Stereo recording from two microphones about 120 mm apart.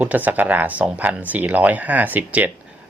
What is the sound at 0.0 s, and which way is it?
Speech, 15° right (ahead or behind).